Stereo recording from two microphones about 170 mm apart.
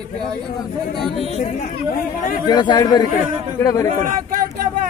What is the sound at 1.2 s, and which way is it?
Speech, 40° left (ahead or behind).